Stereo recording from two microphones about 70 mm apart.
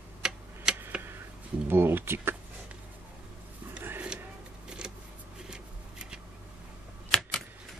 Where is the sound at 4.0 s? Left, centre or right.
Centre.